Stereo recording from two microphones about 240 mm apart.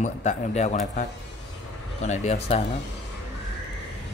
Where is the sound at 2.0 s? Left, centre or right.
Left.